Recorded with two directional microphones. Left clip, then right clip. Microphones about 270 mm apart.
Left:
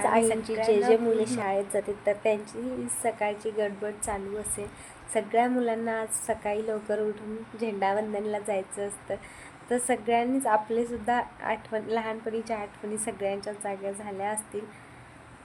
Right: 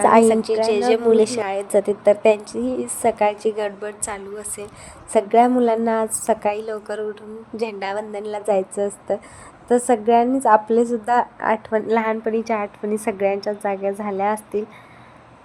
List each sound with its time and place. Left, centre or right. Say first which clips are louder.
0.0 s a woman's voice: right 10 dB; right